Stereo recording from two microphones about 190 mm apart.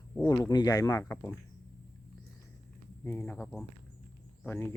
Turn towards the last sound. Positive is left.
turn(degrees=10)  # may be behind; listen again after turning